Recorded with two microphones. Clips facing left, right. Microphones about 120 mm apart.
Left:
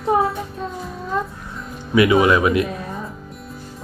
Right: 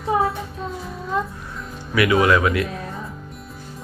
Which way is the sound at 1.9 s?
25° left (ahead or behind).